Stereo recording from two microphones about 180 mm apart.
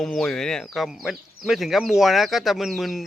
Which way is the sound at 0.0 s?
5° left (ahead or behind).